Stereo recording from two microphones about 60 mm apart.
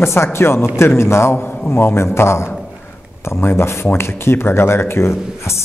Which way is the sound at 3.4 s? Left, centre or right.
Left.